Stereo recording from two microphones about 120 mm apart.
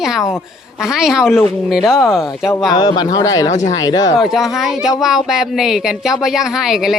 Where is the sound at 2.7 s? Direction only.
35° left (ahead or behind).